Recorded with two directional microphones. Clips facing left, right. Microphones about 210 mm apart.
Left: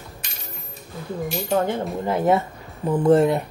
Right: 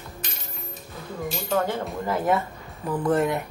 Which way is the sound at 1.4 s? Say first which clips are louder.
Left 3 dB; 20° left (ahead or behind).